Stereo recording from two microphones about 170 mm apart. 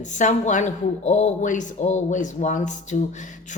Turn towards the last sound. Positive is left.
turn(degrees=45)  # may be behind; listen again after turning